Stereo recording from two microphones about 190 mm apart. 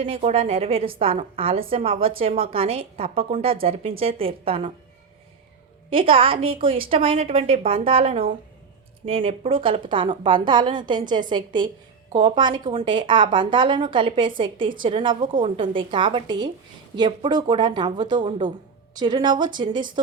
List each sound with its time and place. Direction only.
0.0 s a woman's voice: 35° right (ahead or behind)
5.9 s a woman's voice: 30° right (ahead or behind)